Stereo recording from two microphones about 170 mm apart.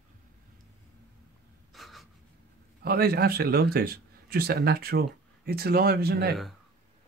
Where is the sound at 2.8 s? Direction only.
65° right (ahead or behind).